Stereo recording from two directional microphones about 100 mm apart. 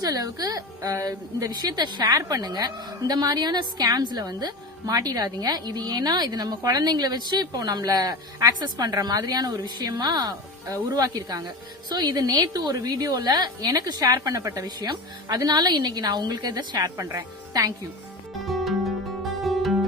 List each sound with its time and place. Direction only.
0.0 s a woman's voice: 40° right (ahead or behind)
18.4 s music: centre (ahead or behind)